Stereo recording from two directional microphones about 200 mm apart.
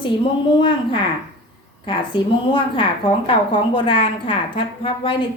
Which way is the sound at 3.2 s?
25° left (ahead or behind).